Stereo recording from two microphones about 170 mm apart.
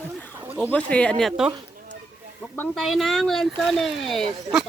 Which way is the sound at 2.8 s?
Centre (ahead or behind).